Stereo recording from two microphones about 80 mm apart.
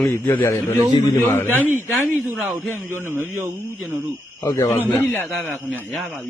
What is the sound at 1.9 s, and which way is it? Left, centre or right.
Speech, centre.